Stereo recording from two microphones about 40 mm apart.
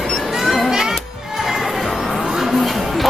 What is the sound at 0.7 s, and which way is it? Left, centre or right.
Music, centre.